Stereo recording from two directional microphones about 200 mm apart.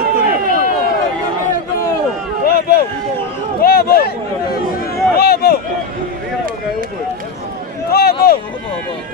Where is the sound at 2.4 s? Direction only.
50° left (ahead or behind).